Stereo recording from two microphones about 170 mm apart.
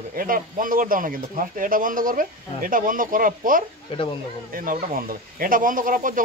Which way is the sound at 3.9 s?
30° left (ahead or behind).